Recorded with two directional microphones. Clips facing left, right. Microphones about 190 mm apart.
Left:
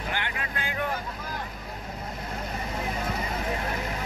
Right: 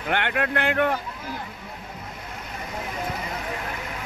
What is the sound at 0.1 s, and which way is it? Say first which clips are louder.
Speech: right 12 dB; 65° right (ahead or behind).